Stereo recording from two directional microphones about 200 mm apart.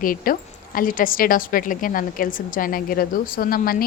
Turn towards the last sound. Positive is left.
turn(degrees=45)  # may be behind; listen again after turning